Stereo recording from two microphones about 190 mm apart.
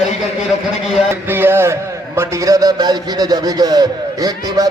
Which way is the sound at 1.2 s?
10° right (ahead or behind).